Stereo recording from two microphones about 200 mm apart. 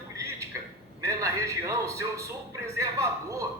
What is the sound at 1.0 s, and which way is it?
A man's voice, 15° right (ahead or behind).